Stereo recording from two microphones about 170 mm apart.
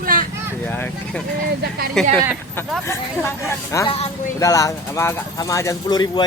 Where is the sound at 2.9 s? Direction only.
15° left (ahead or behind).